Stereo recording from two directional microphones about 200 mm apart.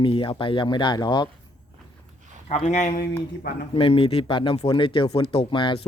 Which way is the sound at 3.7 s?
25° left (ahead or behind).